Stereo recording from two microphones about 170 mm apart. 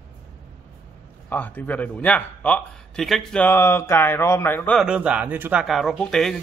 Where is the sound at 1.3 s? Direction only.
10° left (ahead or behind).